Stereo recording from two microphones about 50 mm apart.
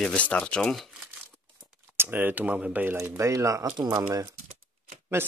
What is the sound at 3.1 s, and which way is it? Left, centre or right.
Speech, right.